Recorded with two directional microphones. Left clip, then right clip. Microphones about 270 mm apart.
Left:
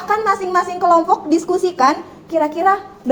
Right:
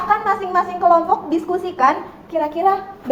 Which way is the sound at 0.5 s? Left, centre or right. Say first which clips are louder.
Even; left.